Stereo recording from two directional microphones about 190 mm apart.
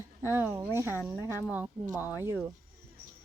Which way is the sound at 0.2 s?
10° right (ahead or behind).